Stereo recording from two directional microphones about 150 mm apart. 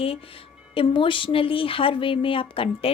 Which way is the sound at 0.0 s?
40° left (ahead or behind).